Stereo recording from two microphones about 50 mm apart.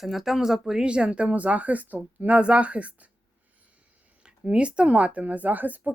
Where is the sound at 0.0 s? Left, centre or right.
Centre; by 3.1 s right.